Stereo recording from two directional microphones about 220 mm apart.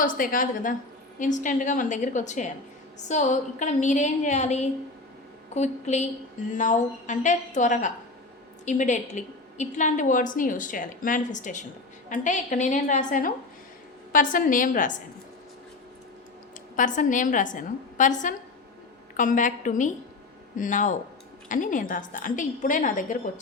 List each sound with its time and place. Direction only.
0.0 s a woman's voice: 40° left (ahead or behind)
16.7 s a woman's voice: 35° left (ahead or behind)